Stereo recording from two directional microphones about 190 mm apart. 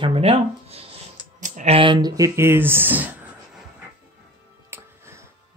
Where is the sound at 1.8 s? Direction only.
25° right (ahead or behind).